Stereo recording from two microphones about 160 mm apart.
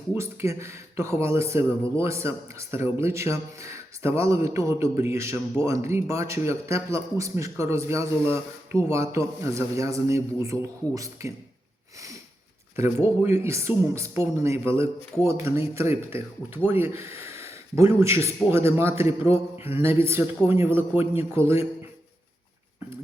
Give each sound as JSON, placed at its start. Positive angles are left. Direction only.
{"t": 0.1, "sound": "a man's voice", "side_deg": -15}
{"t": 12.7, "sound": "a man's voice", "side_deg": -15}
{"t": 19.3, "sound": "mantra", "side_deg": 40}
{"t": 19.8, "sound": "a man's voice", "side_deg": -15}